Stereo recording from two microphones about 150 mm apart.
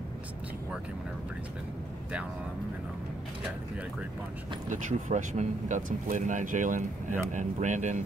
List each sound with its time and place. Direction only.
4.6 s speech: 55° right (ahead or behind)